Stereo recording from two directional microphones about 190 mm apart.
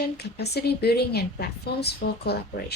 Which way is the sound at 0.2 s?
60° left (ahead or behind).